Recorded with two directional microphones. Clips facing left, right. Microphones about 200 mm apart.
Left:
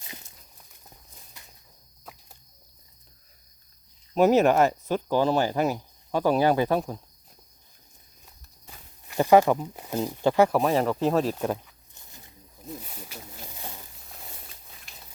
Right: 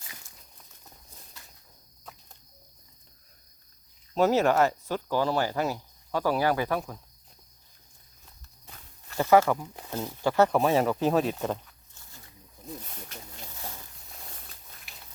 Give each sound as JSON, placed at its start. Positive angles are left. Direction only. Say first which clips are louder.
{"t": 0.0, "sound": "walk", "louder": "left 5 dB", "side_deg": 20}
{"t": 1.4, "sound": "a sound", "louder": "left 2 dB", "side_deg": 15}
{"t": 4.1, "sound": "speech", "louder": "left 4 dB", "side_deg": 15}
{"t": 8.6, "sound": "speech", "louder": "left 2 dB", "side_deg": 15}
{"t": 10.5, "sound": "speech", "louder": "left 1 dB", "side_deg": 0}
{"t": 11.9, "sound": "wild animals", "louder": "left 2 dB", "side_deg": 20}
{"t": 12.6, "sound": "wild animals", "louder": "left 2 dB", "side_deg": 5}
{"t": 13.5, "sound": "a sound", "louder": "right 1 dB", "side_deg": 15}
{"t": 14.9, "sound": "a sound", "louder": "left 1 dB", "side_deg": -5}